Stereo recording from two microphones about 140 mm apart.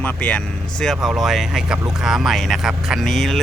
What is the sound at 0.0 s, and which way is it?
Speech, 10° left (ahead or behind).